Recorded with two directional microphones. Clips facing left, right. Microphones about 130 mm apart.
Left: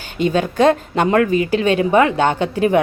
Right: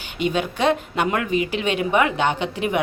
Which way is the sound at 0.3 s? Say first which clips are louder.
Left 7 dB; 40° left (ahead or behind).